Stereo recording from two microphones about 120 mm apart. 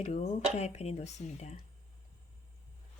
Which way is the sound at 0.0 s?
65° left (ahead or behind).